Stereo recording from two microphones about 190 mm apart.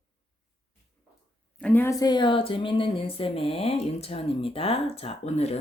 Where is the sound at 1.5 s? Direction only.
10° left (ahead or behind).